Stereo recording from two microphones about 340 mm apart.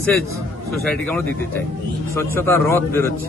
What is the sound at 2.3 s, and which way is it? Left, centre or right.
Speech, centre.